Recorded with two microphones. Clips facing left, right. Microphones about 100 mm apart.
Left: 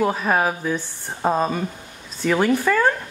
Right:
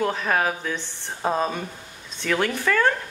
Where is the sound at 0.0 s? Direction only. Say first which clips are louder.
Left 3 dB; 10° left (ahead or behind).